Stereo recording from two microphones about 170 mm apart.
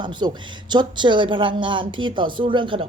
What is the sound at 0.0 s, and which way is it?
A woman's voice, 25° right (ahead or behind).